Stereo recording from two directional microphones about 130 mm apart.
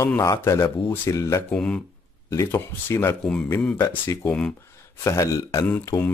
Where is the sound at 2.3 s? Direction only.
20° left (ahead or behind).